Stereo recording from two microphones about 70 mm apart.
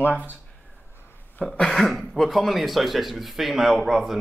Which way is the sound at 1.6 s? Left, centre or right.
Centre.